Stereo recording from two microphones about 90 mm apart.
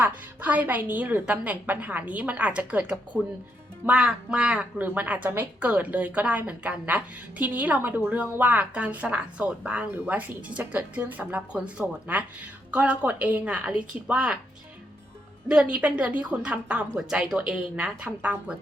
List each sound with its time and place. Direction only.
0.0 s a woman's voice: 20° right (ahead or behind)
3.8 s a woman's voice: 10° right (ahead or behind)
15.4 s a woman's voice: 10° right (ahead or behind)